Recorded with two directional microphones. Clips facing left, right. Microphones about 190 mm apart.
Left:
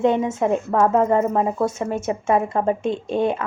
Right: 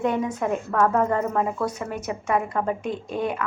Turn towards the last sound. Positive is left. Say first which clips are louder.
# left 5 dB
turn(degrees=25)  # may be behind; listen again after turning